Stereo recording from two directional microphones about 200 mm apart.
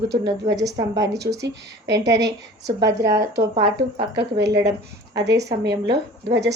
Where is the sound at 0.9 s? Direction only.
60° right (ahead or behind).